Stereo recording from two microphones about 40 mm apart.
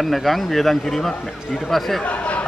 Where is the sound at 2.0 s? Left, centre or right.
Left.